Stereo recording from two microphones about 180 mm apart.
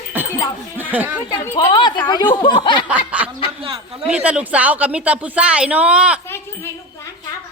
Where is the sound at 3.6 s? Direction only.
30° right (ahead or behind).